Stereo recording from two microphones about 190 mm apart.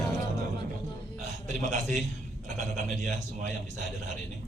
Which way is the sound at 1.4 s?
40° right (ahead or behind).